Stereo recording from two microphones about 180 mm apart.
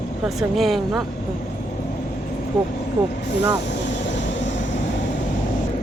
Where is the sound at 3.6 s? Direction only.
80° left.